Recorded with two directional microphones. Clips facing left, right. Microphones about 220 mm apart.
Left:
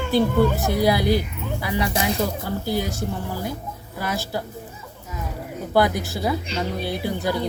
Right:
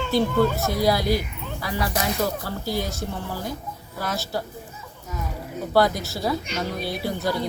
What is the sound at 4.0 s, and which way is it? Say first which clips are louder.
Speech: left 1 dB; 10° left (ahead or behind).